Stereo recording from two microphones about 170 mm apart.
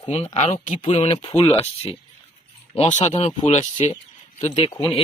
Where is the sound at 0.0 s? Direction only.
35° left (ahead or behind).